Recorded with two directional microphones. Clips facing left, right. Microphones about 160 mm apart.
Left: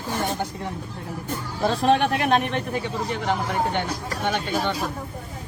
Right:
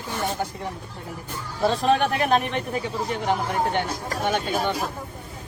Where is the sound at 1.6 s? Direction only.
Centre (ahead or behind).